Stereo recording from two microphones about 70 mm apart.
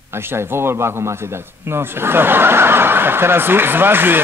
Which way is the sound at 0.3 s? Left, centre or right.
Right.